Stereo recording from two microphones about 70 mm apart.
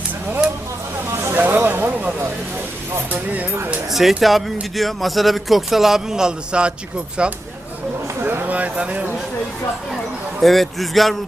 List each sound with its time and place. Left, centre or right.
1.1 s a sound: right
3.1 s speech: right
3.9 s a man's voice: centre
8.2 s a sound: right
8.4 s speech: right
10.4 s a man's voice: centre